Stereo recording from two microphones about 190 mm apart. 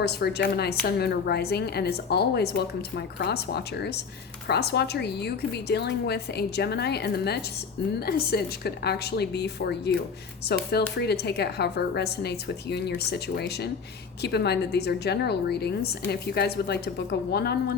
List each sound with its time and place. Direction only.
0.0 s a woman's voice: 60° left (ahead or behind)